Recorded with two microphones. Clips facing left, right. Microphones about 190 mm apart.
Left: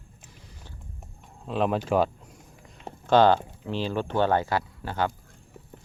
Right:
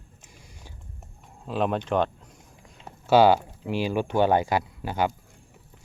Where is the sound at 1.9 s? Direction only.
5° left (ahead or behind).